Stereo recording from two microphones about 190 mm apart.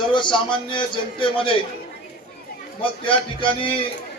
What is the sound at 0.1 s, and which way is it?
A man's voice, 25° left (ahead or behind).